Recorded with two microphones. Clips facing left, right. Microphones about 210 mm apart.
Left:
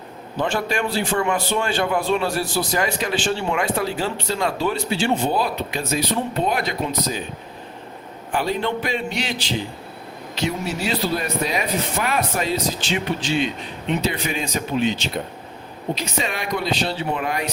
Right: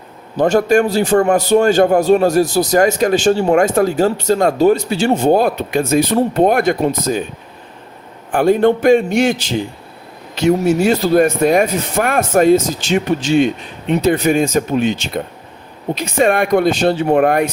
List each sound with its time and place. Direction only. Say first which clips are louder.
0.3 s a man's voice: right 11 dB; 40° right (ahead or behind)
8.3 s a man's voice: right 11 dB; 50° right (ahead or behind)